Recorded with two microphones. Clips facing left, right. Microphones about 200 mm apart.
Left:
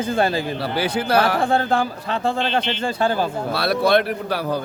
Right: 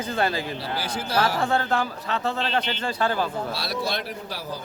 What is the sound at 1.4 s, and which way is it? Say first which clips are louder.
A man's voice: left 4 dB; 30° left (ahead or behind).